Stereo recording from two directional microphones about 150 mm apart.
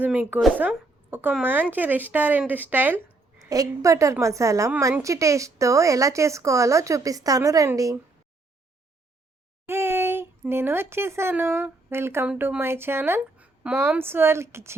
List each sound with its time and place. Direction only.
0.0 s a woman's voice: 10° right (ahead or behind)
9.6 s speech: 15° right (ahead or behind)